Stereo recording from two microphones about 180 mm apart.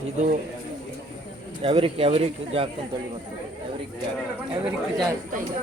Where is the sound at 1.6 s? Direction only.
30° right (ahead or behind).